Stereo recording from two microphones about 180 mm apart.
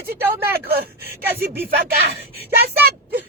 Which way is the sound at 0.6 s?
60° right (ahead or behind).